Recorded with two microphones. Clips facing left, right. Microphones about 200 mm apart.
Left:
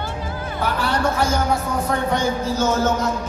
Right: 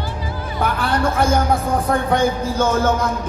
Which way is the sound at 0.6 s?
55° right (ahead or behind).